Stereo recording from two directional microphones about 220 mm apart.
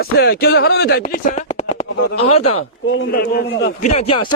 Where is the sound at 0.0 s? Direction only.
45° left (ahead or behind); by 2.6 s 30° left (ahead or behind).